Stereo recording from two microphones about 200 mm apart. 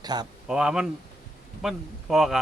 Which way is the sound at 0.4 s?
5° right (ahead or behind).